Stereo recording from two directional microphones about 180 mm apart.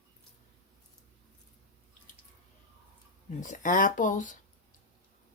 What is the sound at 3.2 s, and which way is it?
Speech, 45° left (ahead or behind).